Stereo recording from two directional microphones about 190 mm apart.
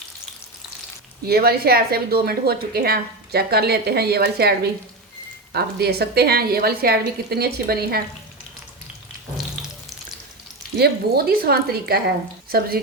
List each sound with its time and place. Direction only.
1.3 s a woman's voice: 55° right (ahead or behind)
10.8 s a woman's voice: 55° right (ahead or behind)